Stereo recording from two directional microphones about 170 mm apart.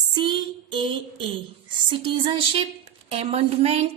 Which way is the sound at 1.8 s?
30° right (ahead or behind).